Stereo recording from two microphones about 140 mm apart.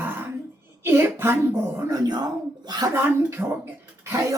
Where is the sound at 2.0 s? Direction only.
30° right (ahead or behind).